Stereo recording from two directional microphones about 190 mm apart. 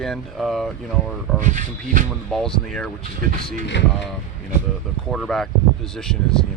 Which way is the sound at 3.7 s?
65° left (ahead or behind).